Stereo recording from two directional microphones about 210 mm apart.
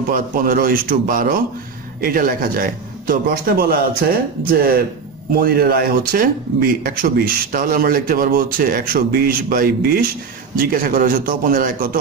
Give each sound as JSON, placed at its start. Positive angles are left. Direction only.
{"t": 0.1, "sound": "a man's voice", "side_deg": -40}